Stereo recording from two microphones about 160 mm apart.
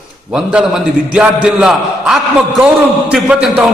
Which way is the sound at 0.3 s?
5° right (ahead or behind).